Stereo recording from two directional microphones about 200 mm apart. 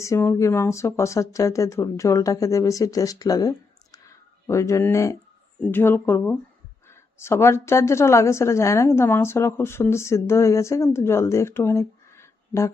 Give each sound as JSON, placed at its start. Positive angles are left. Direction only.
{"t": 0.0, "sound": "a woman's voice", "side_deg": 15}